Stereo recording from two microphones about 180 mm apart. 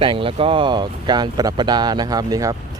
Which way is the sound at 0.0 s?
30° right (ahead or behind).